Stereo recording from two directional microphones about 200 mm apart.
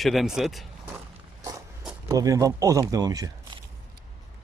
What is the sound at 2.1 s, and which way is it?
Speech, 15° right (ahead or behind).